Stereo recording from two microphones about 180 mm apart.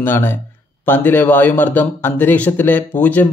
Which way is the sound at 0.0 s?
10° left (ahead or behind).